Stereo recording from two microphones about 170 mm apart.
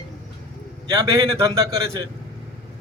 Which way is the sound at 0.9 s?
20° right (ahead or behind).